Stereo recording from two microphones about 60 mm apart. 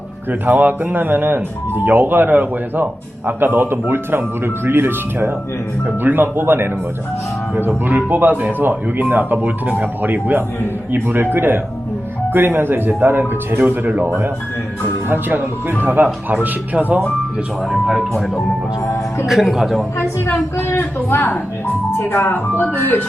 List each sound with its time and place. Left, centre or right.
0.3 s speech: right
17.7 s speech: centre
20.0 s a woman's voice: left